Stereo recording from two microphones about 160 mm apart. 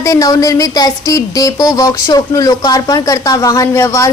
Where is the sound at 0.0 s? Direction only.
20° left (ahead or behind).